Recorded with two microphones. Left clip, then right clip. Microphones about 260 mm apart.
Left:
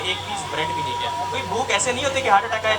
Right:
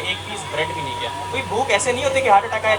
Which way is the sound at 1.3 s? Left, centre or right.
Right.